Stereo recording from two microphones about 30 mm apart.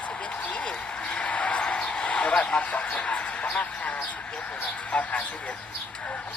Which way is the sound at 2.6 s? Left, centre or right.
Left.